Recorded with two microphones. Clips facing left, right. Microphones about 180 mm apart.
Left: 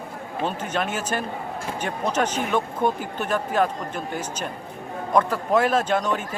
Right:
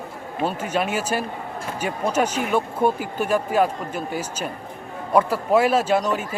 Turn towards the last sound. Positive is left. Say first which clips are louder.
# right 2 dB
turn(degrees=-5)  # may be behind; listen again after turning